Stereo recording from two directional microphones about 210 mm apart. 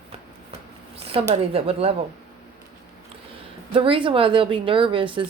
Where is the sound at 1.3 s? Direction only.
30° right (ahead or behind).